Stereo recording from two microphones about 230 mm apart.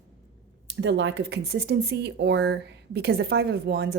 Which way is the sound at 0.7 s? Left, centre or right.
Right.